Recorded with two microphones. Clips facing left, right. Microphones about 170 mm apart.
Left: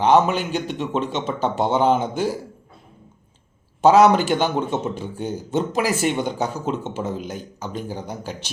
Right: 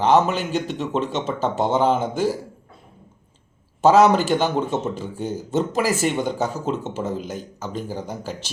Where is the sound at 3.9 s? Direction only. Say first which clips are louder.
Even; 40° right (ahead or behind).